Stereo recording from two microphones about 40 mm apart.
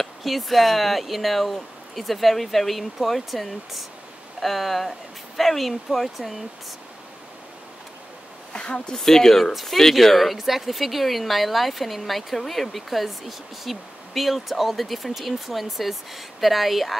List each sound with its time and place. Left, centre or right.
0.0 s speech: centre
8.6 s speech: left
8.9 s speech: centre
9.5 s speech: centre
9.8 s speech: centre